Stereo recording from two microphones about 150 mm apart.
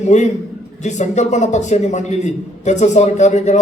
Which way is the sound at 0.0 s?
50° left (ahead or behind).